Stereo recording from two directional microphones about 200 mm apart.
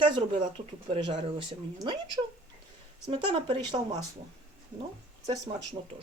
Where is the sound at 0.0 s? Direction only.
25° right (ahead or behind).